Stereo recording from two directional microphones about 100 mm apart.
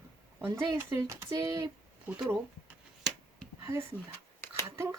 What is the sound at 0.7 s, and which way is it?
Speech, 30° right (ahead or behind).